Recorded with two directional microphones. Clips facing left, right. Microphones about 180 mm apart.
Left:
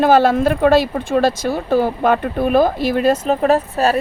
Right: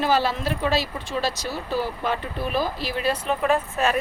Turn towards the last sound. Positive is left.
turn(degrees=35)  # may be behind; listen again after turning